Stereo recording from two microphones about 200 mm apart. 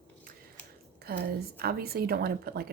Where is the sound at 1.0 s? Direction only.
55° right (ahead or behind).